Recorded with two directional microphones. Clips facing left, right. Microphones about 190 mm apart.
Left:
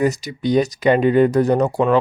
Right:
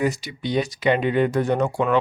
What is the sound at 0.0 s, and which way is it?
Speech, 40° left (ahead or behind).